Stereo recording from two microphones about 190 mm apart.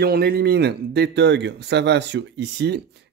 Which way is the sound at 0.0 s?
55° right (ahead or behind).